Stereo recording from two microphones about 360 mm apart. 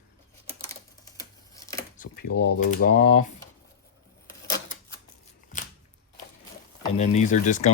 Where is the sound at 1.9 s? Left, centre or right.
Left.